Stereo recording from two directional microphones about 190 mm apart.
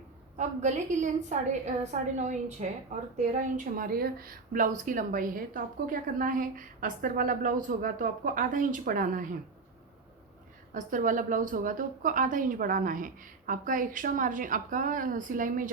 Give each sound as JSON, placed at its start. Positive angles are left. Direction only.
{"t": 0.3, "sound": "a woman's voice", "side_deg": -40}
{"t": 10.8, "sound": "a woman's voice", "side_deg": -45}